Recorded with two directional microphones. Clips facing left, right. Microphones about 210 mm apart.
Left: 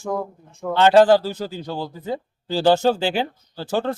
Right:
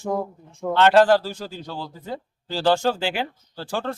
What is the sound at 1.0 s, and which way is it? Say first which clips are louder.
Speech: left 3 dB; 25° left (ahead or behind).